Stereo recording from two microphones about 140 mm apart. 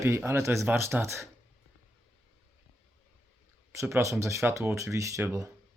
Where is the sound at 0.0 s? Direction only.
20° right (ahead or behind).